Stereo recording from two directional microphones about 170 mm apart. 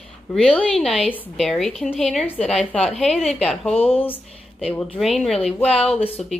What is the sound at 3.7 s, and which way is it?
Speech, 35° left (ahead or behind).